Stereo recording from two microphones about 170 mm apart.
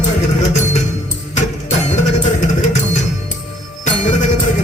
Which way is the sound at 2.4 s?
45° left (ahead or behind).